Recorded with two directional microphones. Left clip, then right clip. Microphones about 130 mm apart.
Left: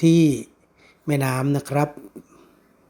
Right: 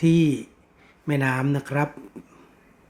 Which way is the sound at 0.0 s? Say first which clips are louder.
Left 4 dB; 30° left (ahead or behind).